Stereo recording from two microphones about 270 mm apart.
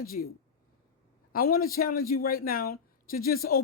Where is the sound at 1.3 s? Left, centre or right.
Left.